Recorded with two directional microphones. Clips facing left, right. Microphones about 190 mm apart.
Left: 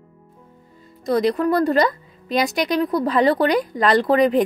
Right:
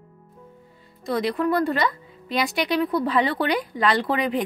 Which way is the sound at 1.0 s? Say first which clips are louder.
Left 5 dB; 40° left (ahead or behind).